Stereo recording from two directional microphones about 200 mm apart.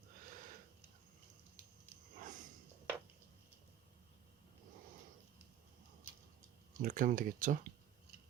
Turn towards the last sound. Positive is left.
turn(degrees=-40)  # may be behind; listen again after turning